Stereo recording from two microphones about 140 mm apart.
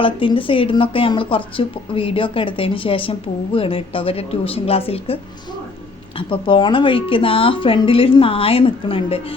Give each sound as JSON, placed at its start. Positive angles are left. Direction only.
{"t": 0.0, "sound": "a woman's voice", "side_deg": 40}